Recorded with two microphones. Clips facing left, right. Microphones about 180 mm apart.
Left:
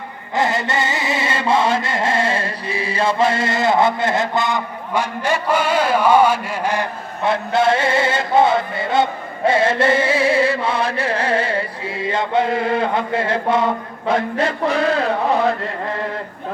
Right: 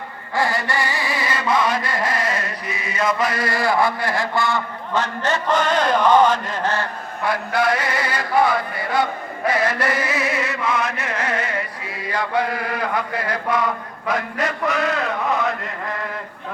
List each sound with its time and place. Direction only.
0.3 s chant: 20° left (ahead or behind)
7.2 s chant: 25° left (ahead or behind)